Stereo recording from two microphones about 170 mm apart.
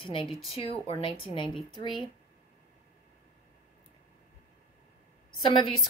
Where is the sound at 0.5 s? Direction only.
35° left (ahead or behind).